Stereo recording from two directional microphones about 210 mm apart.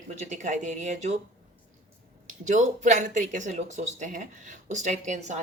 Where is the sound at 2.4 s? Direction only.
35° right (ahead or behind).